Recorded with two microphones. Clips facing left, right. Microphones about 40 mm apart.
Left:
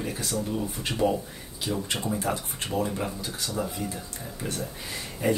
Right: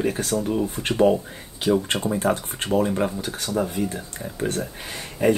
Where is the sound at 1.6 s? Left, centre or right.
Right.